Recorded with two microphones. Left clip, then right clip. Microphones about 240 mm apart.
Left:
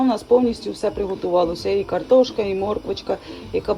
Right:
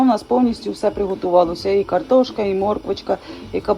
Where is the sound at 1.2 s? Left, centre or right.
Right.